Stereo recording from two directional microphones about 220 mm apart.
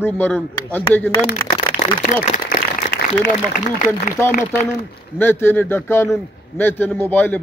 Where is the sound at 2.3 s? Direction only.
40° left (ahead or behind).